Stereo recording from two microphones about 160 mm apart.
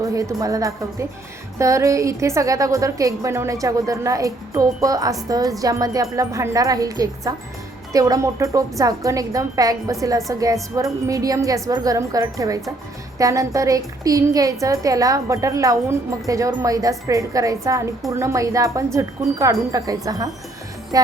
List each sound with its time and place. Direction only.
0.0 s a woman's voice: 20° right (ahead or behind)